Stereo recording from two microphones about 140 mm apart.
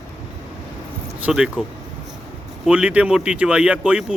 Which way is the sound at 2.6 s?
10° right (ahead or behind).